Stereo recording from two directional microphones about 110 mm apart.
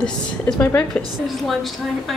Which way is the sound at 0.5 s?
15° left (ahead or behind).